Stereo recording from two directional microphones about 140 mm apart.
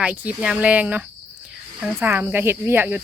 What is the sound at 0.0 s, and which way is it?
Speech, 10° right (ahead or behind).